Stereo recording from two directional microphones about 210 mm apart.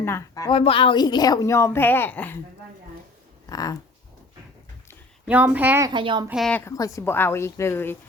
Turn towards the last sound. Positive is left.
turn(degrees=10)  # may be behind; listen again after turning